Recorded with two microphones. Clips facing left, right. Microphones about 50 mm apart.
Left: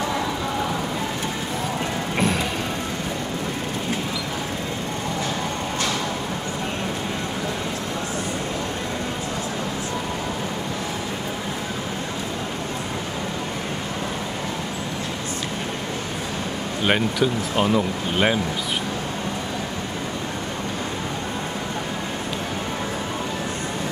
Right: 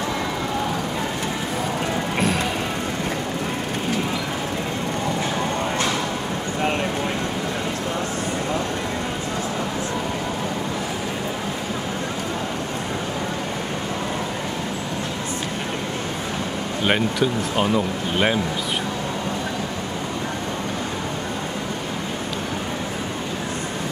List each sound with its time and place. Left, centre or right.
16.8 s speech: centre